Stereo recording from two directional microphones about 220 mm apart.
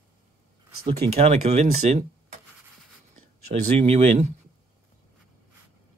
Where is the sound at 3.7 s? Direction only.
30° right (ahead or behind).